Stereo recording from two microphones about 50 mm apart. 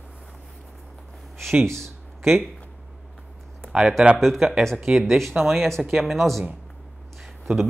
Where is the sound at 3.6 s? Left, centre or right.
Centre.